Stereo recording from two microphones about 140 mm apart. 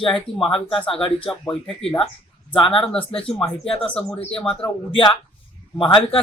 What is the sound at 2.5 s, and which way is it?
Speech, 40° left (ahead or behind).